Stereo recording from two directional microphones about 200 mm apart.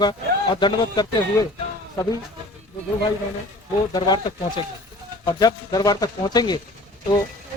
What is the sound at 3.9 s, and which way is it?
Speech, 20° left (ahead or behind).